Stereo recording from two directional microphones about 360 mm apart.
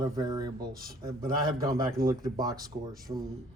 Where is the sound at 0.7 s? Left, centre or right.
Right.